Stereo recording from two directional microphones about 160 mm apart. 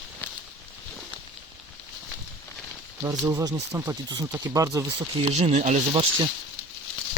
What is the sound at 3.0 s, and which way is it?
Speech, 20° right (ahead or behind).